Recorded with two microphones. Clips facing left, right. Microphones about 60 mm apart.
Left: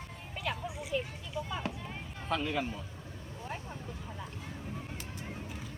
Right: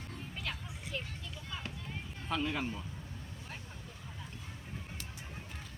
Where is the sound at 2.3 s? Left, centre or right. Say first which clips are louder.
Left 2 dB; centre.